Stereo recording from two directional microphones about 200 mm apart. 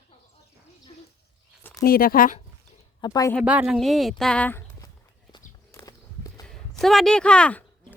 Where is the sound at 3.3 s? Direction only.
5° right (ahead or behind); by 4.9 s 10° left (ahead or behind).